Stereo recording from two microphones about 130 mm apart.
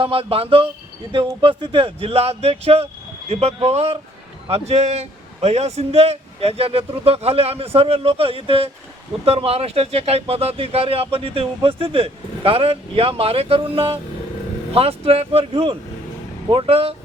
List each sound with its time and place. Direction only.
0.0 s speech: 45° right (ahead or behind)